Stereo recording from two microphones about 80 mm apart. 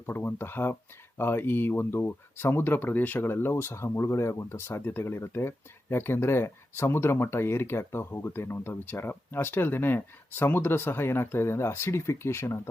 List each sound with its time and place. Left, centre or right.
0.0 s speech: left